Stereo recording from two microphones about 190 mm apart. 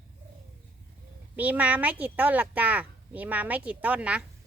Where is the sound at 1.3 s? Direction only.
10° right (ahead or behind).